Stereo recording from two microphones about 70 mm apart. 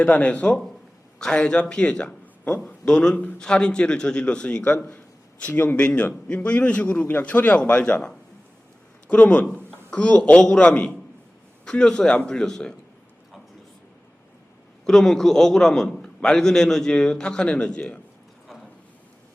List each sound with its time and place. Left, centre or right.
0.0 s a man's voice: left
9.0 s a man's voice: centre
14.8 s a man's voice: centre
18.4 s a sound: centre